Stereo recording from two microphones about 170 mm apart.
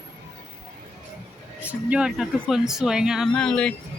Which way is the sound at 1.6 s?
10° right (ahead or behind).